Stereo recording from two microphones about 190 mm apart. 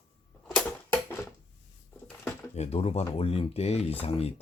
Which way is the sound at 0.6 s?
10° left (ahead or behind).